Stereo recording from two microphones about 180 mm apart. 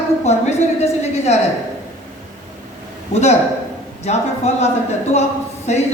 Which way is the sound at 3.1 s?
40° left (ahead or behind).